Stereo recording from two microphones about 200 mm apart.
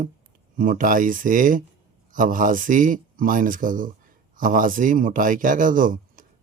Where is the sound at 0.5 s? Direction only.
45° right (ahead or behind).